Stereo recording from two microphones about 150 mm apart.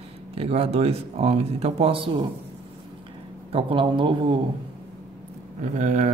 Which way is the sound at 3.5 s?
40° right (ahead or behind).